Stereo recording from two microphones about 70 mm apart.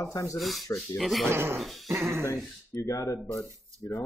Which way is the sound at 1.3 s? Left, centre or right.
Right.